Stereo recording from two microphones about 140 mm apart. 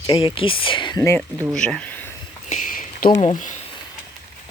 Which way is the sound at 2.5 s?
75° left (ahead or behind).